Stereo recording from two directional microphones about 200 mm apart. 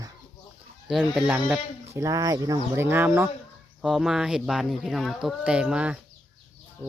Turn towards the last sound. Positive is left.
turn(degrees=-5)  # may be behind; listen again after turning